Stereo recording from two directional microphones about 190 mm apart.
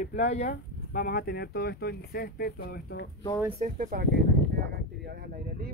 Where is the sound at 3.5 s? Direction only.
45° right (ahead or behind).